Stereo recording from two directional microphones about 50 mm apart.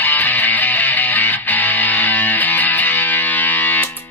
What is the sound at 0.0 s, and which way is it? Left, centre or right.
Music, left.